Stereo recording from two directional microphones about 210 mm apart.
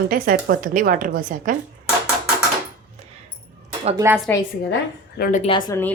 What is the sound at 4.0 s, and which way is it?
Speech, 10° right (ahead or behind).